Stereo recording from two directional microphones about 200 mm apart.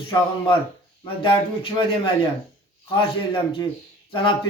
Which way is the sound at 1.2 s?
25° left (ahead or behind).